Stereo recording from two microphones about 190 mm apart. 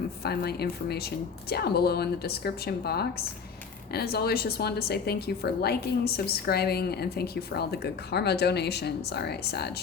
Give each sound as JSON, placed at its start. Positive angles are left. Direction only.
{"t": 0.2, "sound": "a woman's voice", "side_deg": 60}